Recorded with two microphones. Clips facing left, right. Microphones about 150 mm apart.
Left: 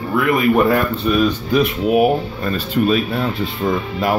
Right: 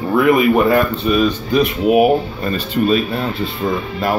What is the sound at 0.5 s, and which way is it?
Speech, centre (ahead or behind).